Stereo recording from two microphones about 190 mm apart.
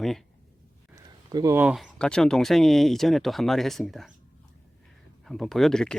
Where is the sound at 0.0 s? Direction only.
Centre (ahead or behind).